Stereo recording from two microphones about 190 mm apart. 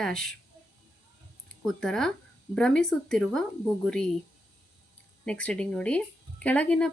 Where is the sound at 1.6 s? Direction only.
Centre (ahead or behind).